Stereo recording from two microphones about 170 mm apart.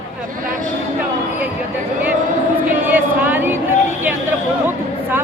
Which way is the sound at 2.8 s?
10° right (ahead or behind).